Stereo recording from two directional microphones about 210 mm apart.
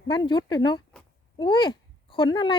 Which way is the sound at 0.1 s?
20° left (ahead or behind).